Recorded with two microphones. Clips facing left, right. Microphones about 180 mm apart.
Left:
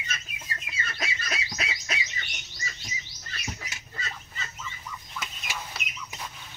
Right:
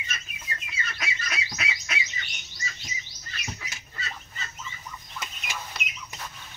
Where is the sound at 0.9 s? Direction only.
35° left (ahead or behind).